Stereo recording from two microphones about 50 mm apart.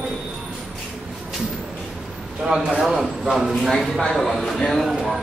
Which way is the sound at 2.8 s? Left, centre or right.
Centre.